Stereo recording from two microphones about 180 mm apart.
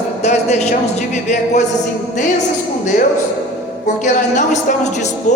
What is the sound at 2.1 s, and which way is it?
Speech, 45° left (ahead or behind).